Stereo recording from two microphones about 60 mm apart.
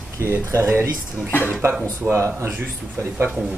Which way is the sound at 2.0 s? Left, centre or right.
Right.